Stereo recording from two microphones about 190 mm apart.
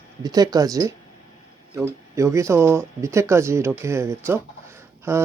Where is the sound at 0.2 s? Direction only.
20° right (ahead or behind).